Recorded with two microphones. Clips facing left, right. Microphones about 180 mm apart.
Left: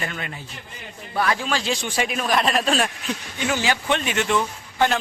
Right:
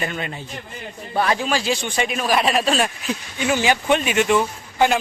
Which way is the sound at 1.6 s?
5° right (ahead or behind).